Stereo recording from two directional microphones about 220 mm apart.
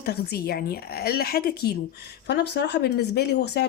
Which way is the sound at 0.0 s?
45° left (ahead or behind).